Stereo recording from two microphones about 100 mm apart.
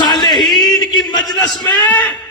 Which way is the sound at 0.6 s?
40° left (ahead or behind).